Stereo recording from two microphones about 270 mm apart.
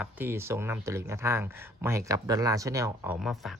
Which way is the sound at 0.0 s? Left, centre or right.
Centre.